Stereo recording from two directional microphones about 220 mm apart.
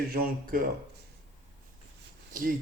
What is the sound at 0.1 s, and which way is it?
Speech, 40° right (ahead or behind).